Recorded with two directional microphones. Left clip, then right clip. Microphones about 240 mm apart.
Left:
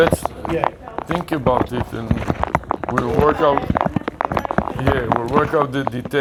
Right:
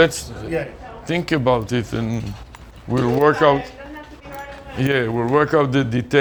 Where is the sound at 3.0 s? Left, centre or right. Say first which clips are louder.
Right 2 dB; right.